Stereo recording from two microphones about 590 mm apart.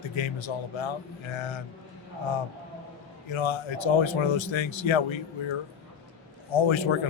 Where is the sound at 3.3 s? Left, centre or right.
Left.